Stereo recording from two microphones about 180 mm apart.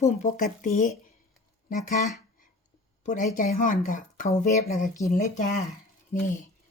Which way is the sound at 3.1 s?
45° left (ahead or behind).